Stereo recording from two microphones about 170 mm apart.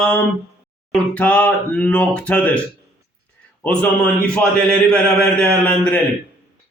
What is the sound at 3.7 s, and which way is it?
Speech, 5° left (ahead or behind).